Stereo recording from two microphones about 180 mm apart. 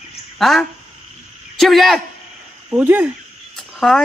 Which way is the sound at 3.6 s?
Centre (ahead or behind).